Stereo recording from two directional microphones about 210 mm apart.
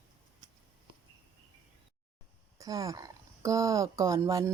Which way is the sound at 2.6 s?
15° right (ahead or behind).